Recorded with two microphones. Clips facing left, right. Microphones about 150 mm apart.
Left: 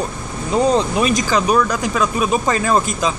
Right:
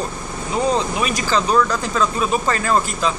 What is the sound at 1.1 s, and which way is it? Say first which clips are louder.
Speech: right 2 dB; 15° left (ahead or behind).